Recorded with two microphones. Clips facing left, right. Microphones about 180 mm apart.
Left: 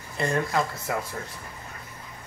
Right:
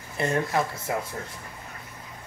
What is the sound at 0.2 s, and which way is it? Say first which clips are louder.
Speech: even; 25° right (ahead or behind).